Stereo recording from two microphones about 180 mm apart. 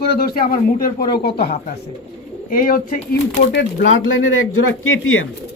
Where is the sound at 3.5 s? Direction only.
90° left.